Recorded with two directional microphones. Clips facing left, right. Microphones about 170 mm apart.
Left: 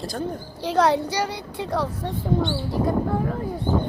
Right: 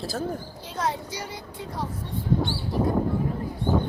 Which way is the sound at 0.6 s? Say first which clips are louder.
Left 11 dB; 75° left (ahead or behind).